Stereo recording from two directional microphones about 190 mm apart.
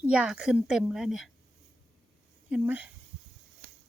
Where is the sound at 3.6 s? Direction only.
55° right (ahead or behind).